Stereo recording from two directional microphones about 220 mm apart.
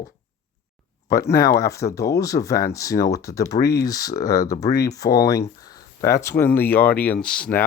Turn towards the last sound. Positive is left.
turn(degrees=5)  # may be behind; listen again after turning